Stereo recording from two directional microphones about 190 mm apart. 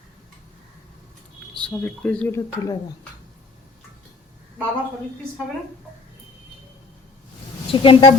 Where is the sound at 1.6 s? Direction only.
5° left (ahead or behind).